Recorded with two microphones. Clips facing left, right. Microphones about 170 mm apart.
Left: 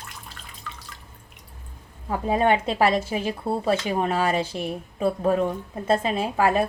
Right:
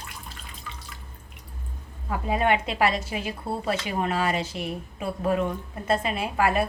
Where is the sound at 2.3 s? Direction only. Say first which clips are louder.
Left 3 dB; 35° left (ahead or behind).